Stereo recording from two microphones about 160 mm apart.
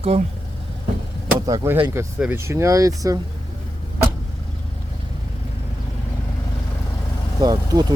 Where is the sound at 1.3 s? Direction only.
20° right (ahead or behind).